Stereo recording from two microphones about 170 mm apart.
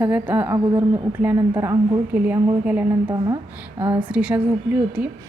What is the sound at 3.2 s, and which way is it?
Speech, 25° right (ahead or behind).